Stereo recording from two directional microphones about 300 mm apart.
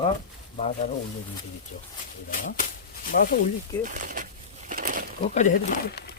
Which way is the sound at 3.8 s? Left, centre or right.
Right.